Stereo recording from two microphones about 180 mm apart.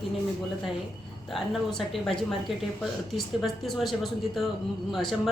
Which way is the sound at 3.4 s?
Centre (ahead or behind).